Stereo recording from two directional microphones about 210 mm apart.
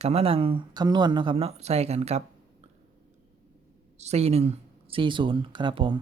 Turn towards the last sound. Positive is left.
turn(degrees=-25)  # may be behind; listen again after turning